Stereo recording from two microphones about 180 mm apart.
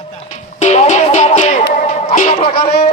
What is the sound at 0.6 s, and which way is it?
Music, 40° left (ahead or behind).